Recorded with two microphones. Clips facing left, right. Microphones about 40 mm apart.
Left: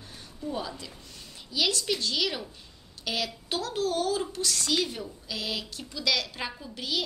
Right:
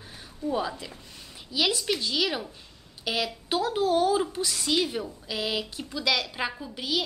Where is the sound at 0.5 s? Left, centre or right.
Centre.